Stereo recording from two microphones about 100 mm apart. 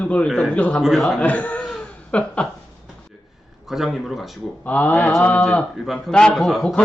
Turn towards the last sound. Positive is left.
turn(degrees=5)  # may be behind; listen again after turning